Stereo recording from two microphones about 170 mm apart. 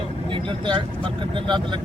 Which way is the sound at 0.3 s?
30° right (ahead or behind).